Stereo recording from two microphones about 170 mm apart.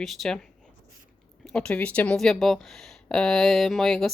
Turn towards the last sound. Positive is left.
turn(degrees=0)  # may be behind; listen again after turning